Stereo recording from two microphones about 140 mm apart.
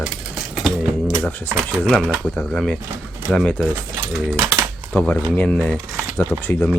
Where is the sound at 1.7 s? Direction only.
5° left (ahead or behind).